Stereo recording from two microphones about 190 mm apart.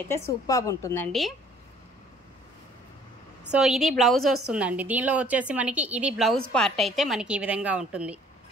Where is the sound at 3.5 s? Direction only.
Centre (ahead or behind).